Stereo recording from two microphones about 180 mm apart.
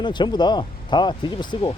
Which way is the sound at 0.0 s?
25° left (ahead or behind).